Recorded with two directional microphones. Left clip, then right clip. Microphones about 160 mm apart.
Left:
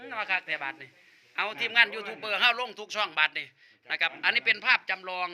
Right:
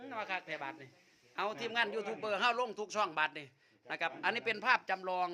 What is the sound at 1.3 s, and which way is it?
A man's voice, 35° right (ahead or behind).